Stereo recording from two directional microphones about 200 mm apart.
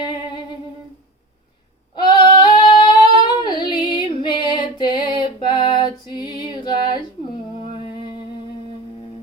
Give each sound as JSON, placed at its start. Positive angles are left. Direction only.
{"t": 0.0, "sound": "music", "side_deg": 20}
{"t": 2.1, "sound": "female singing", "side_deg": 20}